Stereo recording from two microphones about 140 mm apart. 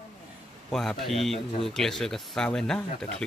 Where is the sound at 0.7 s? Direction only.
5° left (ahead or behind).